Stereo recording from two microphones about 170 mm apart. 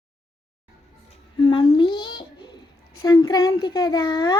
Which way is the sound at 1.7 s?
25° left (ahead or behind).